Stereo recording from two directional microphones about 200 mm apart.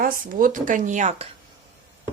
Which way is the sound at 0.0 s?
45° right (ahead or behind).